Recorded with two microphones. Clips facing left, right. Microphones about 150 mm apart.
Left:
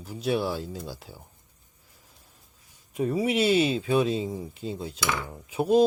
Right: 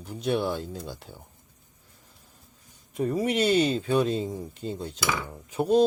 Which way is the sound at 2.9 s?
5° left (ahead or behind).